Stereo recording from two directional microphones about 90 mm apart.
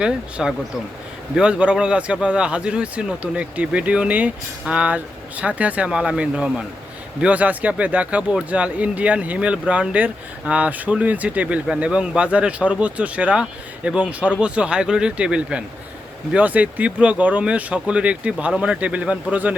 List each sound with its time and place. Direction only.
0.0 s speech: 10° right (ahead or behind)